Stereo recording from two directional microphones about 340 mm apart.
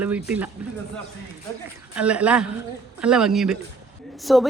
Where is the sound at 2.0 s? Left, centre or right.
Centre.